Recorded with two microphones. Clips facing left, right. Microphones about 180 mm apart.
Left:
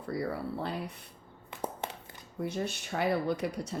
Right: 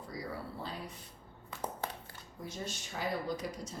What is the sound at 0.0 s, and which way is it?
Speech, 60° left (ahead or behind).